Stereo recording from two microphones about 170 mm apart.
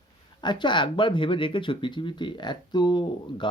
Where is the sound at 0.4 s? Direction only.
25° left (ahead or behind).